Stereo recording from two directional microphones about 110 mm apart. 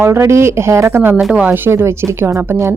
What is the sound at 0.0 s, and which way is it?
Speech, 25° right (ahead or behind).